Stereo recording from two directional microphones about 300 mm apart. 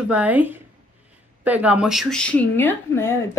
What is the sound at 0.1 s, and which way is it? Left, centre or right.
A woman's voice, centre.